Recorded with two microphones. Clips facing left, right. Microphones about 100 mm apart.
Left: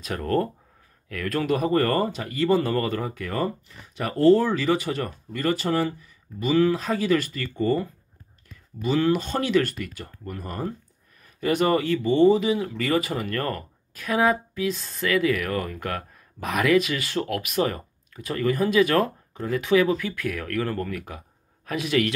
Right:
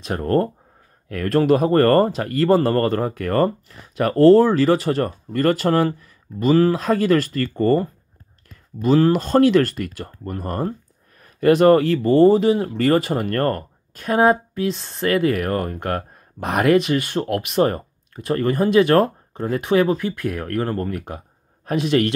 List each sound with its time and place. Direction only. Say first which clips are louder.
0.1 s speech: right 5 dB; 40° right (ahead or behind)
11.1 s a sound: right 10 dB; 55° right (ahead or behind)
11.5 s speech: right 7 dB; 45° right (ahead or behind); by 22.0 s 30° right (ahead or behind)